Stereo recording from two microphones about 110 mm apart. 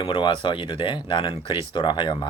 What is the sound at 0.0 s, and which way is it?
Speech, 50° left (ahead or behind).